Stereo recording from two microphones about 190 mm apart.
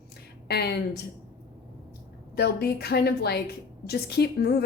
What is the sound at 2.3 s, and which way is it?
A woman's voice, 55° left (ahead or behind).